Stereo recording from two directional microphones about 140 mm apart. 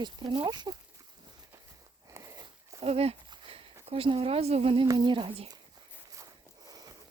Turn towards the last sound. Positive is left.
turn(degrees=-25)  # may be behind; listen again after turning